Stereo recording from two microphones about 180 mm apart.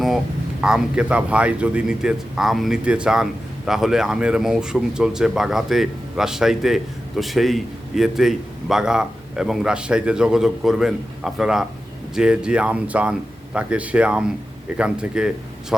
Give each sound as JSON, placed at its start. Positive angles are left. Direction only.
{"t": 0.6, "sound": "speech", "side_deg": -5}